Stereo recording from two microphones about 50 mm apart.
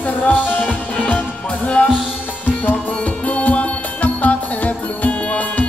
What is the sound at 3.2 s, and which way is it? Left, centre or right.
Music, left.